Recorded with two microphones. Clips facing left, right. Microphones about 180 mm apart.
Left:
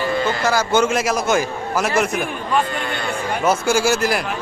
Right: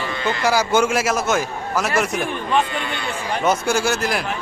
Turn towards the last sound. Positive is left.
turn(degrees=0)  # may be behind; listen again after turning